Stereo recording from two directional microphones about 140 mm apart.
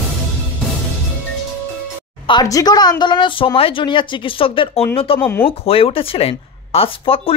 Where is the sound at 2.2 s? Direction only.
30° left (ahead or behind).